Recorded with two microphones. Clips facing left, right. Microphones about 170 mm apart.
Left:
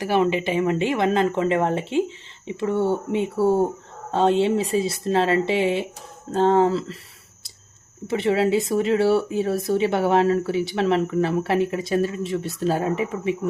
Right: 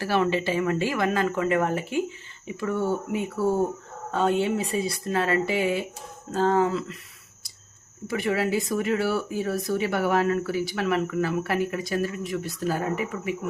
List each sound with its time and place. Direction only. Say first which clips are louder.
0.0 s speech: left 3 dB; 20° left (ahead or behind)
8.0 s speech: left 5 dB; 25° left (ahead or behind)